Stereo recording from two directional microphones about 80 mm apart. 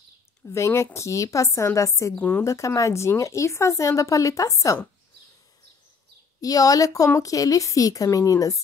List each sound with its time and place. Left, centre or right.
0.5 s a woman's voice: left
2.1 s a woman's voice: centre
2.4 s a woman's voice: left
6.4 s speech: left